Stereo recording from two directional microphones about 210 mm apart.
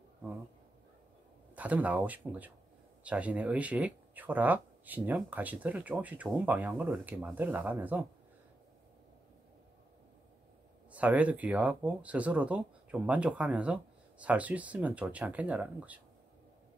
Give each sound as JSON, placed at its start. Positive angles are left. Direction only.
{"t": 1.5, "sound": "speech", "side_deg": -5}
{"t": 10.9, "sound": "speech", "side_deg": -5}